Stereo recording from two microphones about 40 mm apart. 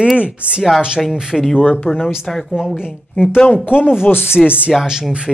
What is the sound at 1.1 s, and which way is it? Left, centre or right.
Speech, centre.